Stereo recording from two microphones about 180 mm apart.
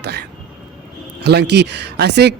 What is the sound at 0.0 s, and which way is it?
A man's voice, 65° right (ahead or behind).